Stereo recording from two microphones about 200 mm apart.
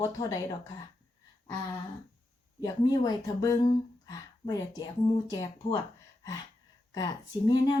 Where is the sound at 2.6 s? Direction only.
20° left (ahead or behind).